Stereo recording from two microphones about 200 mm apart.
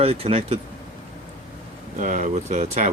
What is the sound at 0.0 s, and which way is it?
Speech, 30° right (ahead or behind).